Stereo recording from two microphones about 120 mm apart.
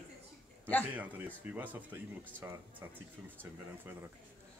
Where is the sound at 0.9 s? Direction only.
15° right (ahead or behind).